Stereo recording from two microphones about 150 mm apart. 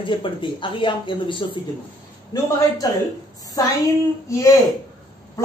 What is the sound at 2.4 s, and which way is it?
Speech, 20° left (ahead or behind).